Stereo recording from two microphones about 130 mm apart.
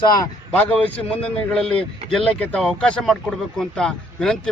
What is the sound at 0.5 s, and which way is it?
Speech, 15° left (ahead or behind).